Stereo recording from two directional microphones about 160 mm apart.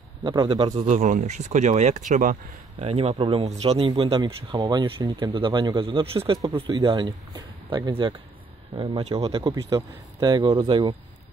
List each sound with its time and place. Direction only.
0.2 s speech: 30° right (ahead or behind)
0.8 s speech: 50° right (ahead or behind)
2.8 s speech: 40° right (ahead or behind)
9.5 s speech: 25° right (ahead or behind)